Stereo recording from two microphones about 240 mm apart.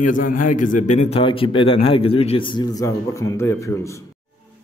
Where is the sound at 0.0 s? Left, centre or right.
Left.